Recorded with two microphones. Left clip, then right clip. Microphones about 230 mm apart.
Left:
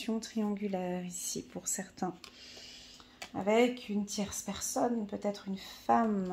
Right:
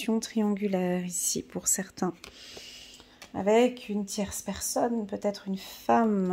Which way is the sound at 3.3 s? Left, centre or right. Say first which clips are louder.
Right 5 dB; right.